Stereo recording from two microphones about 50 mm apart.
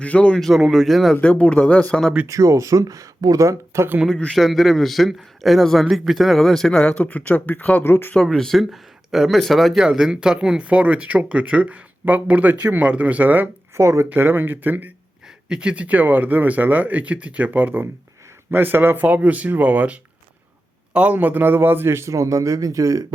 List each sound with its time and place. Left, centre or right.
0.0 s speech: left
0.3 s speech: centre
1.2 s speech: left
2.2 s speech: right
4.1 s speech: centre
4.4 s speech: centre
6.7 s speech: left
7.8 s speech: left
8.1 s speech: centre
9.8 s speech: centre; by 13.5 s right
13.7 s speech: right
14.2 s speech: right
15.4 s a man's voice: centre
21.2 s a man's voice: right